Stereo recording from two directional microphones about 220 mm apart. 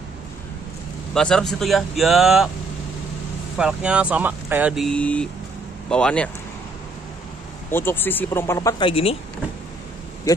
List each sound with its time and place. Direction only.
1.1 s speech: 5° left (ahead or behind)
3.5 s speech: 5° right (ahead or behind)
7.7 s speech: 10° left (ahead or behind); by 9.1 s 25° left (ahead or behind)